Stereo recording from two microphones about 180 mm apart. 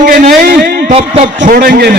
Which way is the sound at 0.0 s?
55° right (ahead or behind).